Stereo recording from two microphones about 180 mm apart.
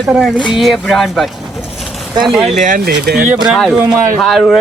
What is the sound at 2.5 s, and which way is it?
Speech, 45° right (ahead or behind).